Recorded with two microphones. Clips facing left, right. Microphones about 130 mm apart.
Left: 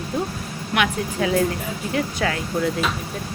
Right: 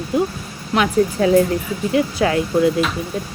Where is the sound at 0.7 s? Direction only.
35° right (ahead or behind).